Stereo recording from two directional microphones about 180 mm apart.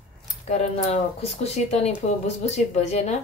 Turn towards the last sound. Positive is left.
turn(degrees=40)  # may be behind; listen again after turning